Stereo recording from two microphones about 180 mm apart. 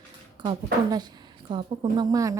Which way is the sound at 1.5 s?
25° right (ahead or behind).